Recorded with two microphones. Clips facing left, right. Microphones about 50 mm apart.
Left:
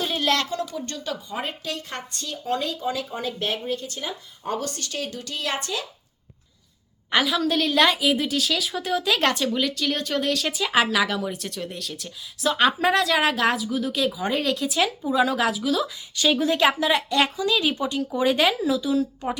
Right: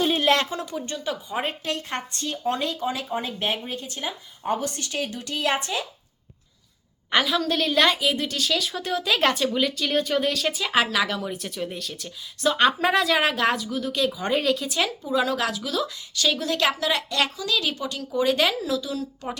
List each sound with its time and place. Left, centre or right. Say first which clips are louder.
0.1 s speech: right 2 dB; right
1.4 s speech: right 2 dB; right
7.1 s a woman's voice: left 1 dB; centre
16.1 s speech: left 3 dB; centre